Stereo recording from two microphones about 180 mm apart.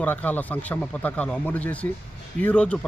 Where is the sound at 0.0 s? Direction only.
10° left (ahead or behind).